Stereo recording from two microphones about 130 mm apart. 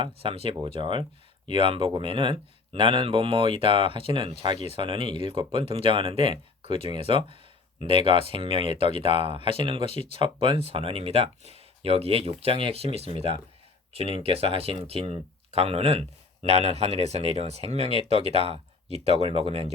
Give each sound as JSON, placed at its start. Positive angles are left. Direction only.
{"t": 0.0, "sound": "speech", "side_deg": -45}